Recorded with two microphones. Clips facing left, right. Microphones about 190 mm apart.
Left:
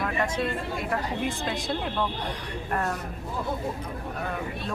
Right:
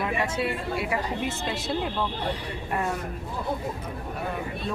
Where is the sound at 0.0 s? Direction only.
10° right (ahead or behind).